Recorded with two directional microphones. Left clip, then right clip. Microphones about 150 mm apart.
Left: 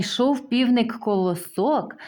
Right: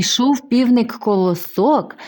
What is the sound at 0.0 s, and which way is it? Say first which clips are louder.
Speech: right 5 dB; 40° right (ahead or behind).